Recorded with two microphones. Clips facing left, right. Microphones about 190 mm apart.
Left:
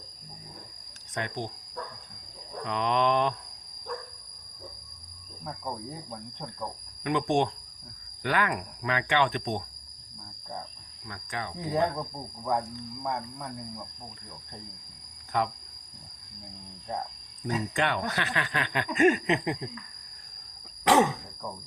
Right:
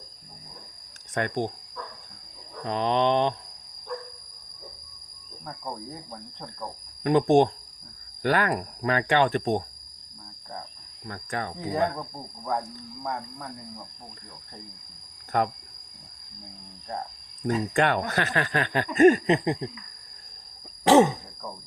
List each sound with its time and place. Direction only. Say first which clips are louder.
1.1 s speech: right 7 dB; 50° right (ahead or behind)
2.6 s speech: right 3 dB; 35° right (ahead or behind)
5.5 s speech: even; centre (ahead or behind)
7.0 s speech: right 7 dB; 40° right (ahead or behind)
11.1 s speech: right 4 dB; 45° right (ahead or behind)
11.7 s speech: even; 5° right (ahead or behind)
12.5 s speech: left 1 dB; 5° left (ahead or behind)
15.3 s speech: right 3 dB; 50° right (ahead or behind)
17.4 s speech: right 5 dB; 45° right (ahead or behind); by 19.7 s 30° right (ahead or behind)
20.8 s a sound: right 5 dB; 30° right (ahead or behind)